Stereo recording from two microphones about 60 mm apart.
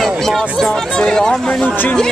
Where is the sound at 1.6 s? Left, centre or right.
Left.